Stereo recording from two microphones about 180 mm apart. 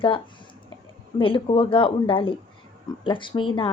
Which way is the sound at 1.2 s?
30° left (ahead or behind).